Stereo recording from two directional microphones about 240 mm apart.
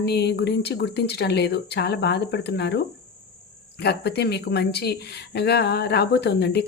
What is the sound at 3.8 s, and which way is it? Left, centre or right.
Speech, left.